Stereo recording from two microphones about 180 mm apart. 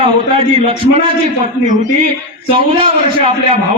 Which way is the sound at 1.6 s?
45° right (ahead or behind).